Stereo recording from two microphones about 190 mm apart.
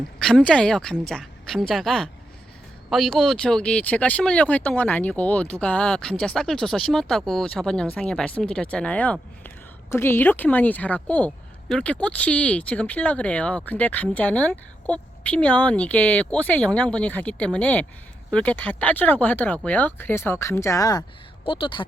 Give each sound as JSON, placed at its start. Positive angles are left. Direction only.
{"t": 0.2, "sound": "speech", "side_deg": 0}